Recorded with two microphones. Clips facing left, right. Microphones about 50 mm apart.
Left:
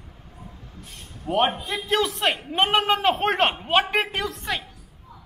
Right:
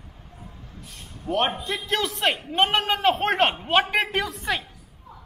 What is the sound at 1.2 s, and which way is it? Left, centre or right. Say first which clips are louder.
A woman's voice: left 2 dB; centre.